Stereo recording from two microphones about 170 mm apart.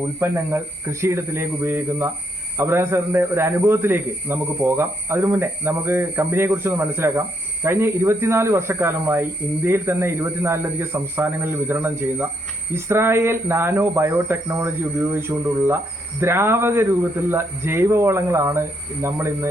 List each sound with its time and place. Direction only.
0.2 s a man's voice: 15° right (ahead or behind)